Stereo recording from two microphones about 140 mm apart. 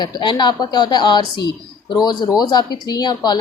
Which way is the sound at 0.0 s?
30° left (ahead or behind).